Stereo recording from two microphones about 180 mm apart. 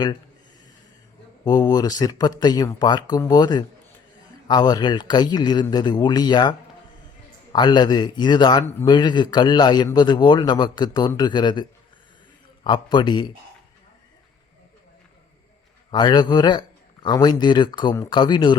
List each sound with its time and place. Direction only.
1.5 s a man's voice: 20° left (ahead or behind)
7.5 s a man's voice: 25° left (ahead or behind)
12.6 s a man's voice: 25° left (ahead or behind)
15.9 s a man's voice: 25° left (ahead or behind)